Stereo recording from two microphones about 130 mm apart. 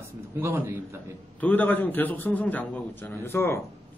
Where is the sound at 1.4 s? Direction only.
15° left (ahead or behind).